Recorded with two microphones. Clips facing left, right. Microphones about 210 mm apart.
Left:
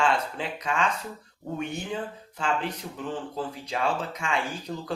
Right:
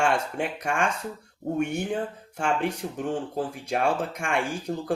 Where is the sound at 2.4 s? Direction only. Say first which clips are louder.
Right 3 dB; 70° right (ahead or behind).